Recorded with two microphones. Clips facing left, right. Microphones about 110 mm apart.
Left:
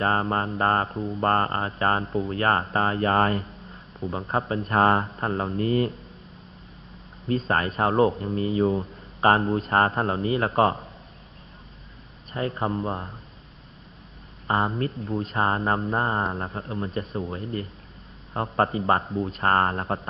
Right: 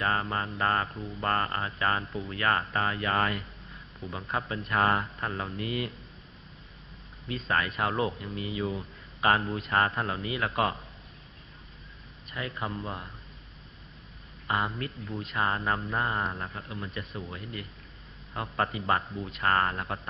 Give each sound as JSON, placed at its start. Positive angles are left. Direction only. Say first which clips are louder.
{"t": 0.0, "sound": "speech", "louder": "left 6 dB", "side_deg": 35}
{"t": 7.2, "sound": "speech", "louder": "left 6 dB", "side_deg": 40}
{"t": 12.3, "sound": "speech", "louder": "left 8 dB", "side_deg": 35}
{"t": 14.5, "sound": "speech", "louder": "left 6 dB", "side_deg": 30}